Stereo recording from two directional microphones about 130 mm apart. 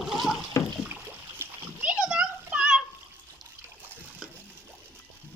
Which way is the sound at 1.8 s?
10° right (ahead or behind).